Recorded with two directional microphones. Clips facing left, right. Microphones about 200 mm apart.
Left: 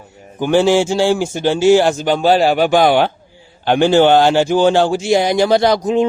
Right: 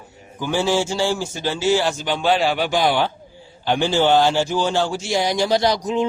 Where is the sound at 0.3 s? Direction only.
65° left (ahead or behind).